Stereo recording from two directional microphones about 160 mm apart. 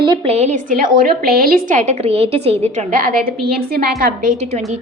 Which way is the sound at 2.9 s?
60° right (ahead or behind).